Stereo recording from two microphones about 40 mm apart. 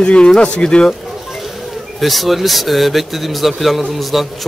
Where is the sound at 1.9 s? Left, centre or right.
Centre.